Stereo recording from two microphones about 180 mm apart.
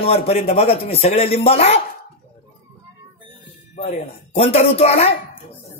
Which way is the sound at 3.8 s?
35° left (ahead or behind).